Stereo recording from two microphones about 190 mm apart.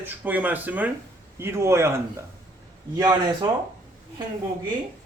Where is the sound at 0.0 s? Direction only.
10° right (ahead or behind).